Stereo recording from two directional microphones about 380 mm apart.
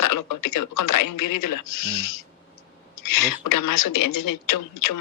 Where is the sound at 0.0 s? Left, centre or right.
Left.